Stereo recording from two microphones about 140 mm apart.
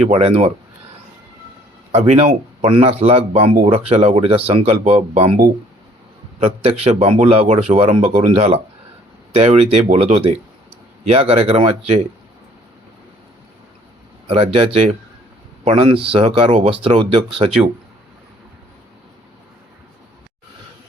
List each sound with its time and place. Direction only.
0.0 s speech: 45° right (ahead or behind)
1.9 s speech: 50° right (ahead or behind)
6.4 s speech: 45° right (ahead or behind)
14.3 s speech: 45° right (ahead or behind)